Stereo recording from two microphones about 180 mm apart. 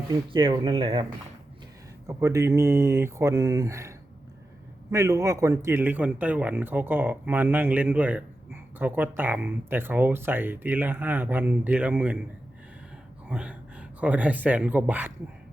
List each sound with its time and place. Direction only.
0.1 s speech: 25° right (ahead or behind)
2.0 s a man's voice: 15° right (ahead or behind)
13.2 s speech: 5° right (ahead or behind)